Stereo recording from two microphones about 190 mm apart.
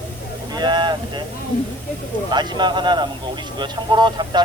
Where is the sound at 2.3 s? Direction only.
25° right (ahead or behind).